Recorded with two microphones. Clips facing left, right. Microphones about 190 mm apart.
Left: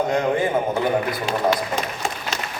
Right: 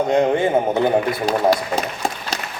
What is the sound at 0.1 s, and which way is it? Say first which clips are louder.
A man's voice: right 4 dB; 25° right (ahead or behind).